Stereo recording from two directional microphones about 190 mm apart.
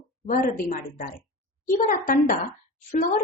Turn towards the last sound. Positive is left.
turn(degrees=40)  # may be behind; listen again after turning